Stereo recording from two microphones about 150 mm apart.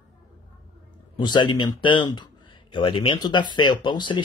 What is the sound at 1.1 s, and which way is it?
Speech, 30° left (ahead or behind).